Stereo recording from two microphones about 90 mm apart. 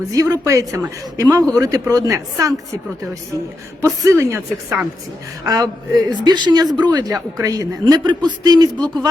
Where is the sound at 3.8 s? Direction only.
35° right (ahead or behind).